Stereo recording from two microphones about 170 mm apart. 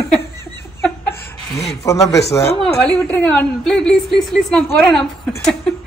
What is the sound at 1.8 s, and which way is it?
Speech, 20° left (ahead or behind).